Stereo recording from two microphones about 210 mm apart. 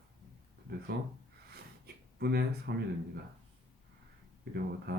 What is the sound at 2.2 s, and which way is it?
Speech, 50° right (ahead or behind).